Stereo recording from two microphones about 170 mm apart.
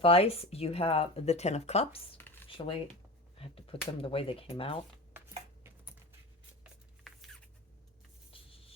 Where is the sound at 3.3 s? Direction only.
35° left (ahead or behind).